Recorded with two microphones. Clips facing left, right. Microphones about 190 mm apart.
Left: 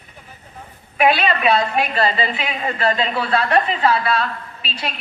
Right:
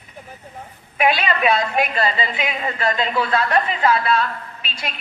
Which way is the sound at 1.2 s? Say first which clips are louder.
Left 2 dB; 35° left (ahead or behind).